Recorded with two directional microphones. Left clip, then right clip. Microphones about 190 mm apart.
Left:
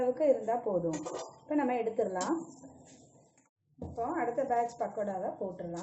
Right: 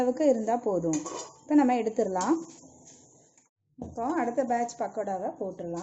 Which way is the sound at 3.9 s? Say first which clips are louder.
Right 4 dB; 55° right (ahead or behind).